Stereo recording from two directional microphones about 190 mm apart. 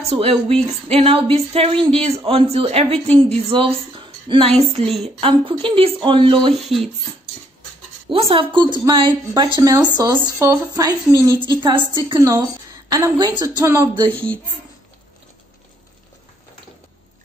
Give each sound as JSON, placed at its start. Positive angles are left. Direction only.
{"t": 0.1, "sound": "a woman's voice", "side_deg": -30}
{"t": 6.6, "sound": "speech", "side_deg": 0}
{"t": 8.1, "sound": "a woman's voice", "side_deg": -30}
{"t": 14.0, "sound": "speech", "side_deg": 5}